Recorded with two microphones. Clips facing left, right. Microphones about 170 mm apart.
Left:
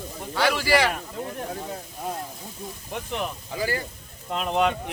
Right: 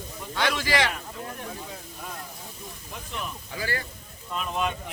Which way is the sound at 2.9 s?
65° left (ahead or behind).